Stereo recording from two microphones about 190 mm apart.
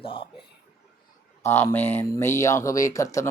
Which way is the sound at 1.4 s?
15° left (ahead or behind).